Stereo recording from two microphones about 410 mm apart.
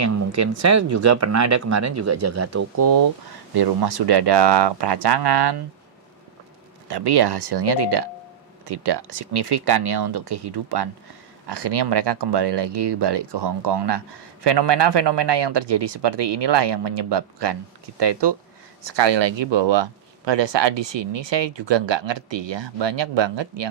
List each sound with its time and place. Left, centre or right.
0.0 s speech: right
3.5 s speech: right
6.8 s speech: right